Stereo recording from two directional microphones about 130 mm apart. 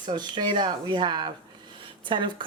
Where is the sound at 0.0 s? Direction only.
35° right (ahead or behind).